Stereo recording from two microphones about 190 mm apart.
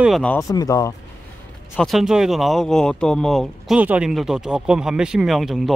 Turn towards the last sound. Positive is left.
turn(degrees=0)  # may be behind; listen again after turning